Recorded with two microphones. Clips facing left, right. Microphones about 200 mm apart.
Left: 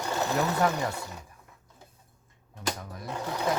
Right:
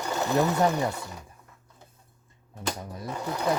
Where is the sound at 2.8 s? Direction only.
25° right (ahead or behind).